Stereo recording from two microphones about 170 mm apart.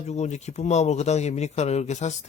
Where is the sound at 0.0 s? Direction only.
40° left (ahead or behind).